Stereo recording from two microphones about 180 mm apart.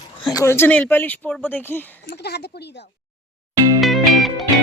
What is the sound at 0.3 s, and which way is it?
Speech, 15° left (ahead or behind).